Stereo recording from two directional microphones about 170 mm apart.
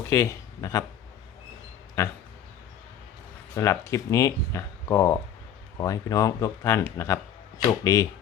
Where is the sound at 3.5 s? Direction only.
15° left (ahead or behind).